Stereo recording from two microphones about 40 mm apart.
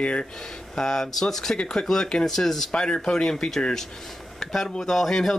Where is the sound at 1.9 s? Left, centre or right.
Centre.